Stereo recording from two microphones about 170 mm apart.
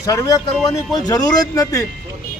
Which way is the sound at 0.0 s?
20° left (ahead or behind).